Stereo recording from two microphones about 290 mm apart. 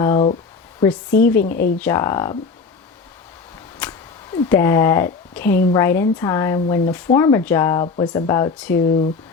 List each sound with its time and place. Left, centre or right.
0.0 s a sound: centre
1.2 s speech: centre
1.5 s speech: left
1.8 s speech: centre
3.8 s a sound: centre
4.4 s speech: centre